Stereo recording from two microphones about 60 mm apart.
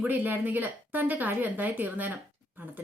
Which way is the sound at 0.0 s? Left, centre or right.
Right.